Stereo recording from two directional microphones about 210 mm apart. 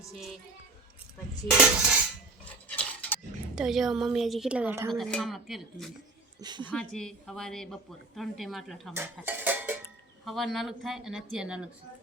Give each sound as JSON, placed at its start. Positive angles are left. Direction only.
{"t": 1.5, "sound": "a woman's voice", "side_deg": -5}
{"t": 2.6, "sound": "a sound", "side_deg": 5}
{"t": 3.5, "sound": "a woman's voice", "side_deg": 0}
{"t": 4.9, "sound": "a woman's voice", "side_deg": 0}
{"t": 6.4, "sound": "a woman's voice", "side_deg": -20}
{"t": 6.7, "sound": "a woman's voice", "side_deg": 5}